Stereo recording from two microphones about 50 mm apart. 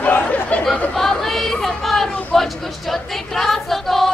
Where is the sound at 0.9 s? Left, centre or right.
Centre.